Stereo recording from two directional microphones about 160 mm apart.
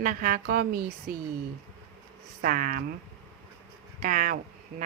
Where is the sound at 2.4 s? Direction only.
60° right (ahead or behind).